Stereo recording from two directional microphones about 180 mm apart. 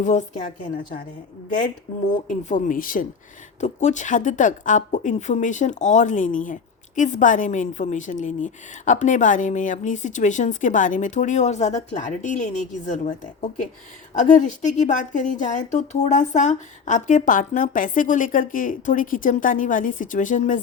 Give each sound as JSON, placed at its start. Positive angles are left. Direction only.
{"t": 0.0, "sound": "speech", "side_deg": 40}
{"t": 2.2, "sound": "speech", "side_deg": 45}
{"t": 14.2, "sound": "speech", "side_deg": 45}